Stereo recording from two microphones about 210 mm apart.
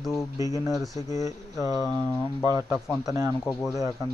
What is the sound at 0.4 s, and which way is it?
Speech, 15° right (ahead or behind).